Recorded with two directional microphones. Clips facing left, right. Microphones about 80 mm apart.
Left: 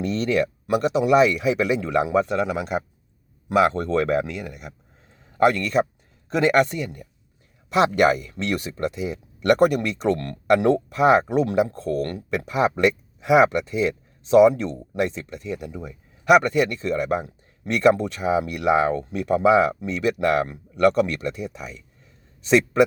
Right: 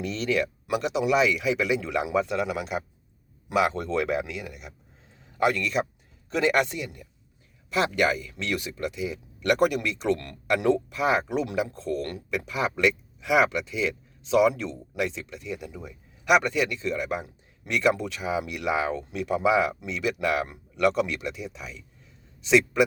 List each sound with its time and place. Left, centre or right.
0.0 s speech: left